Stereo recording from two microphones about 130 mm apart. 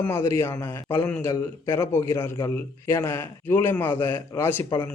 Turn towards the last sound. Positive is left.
turn(degrees=15)  # may be behind; listen again after turning